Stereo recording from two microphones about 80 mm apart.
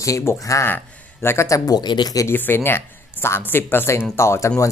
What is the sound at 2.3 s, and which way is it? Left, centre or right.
Speech, left.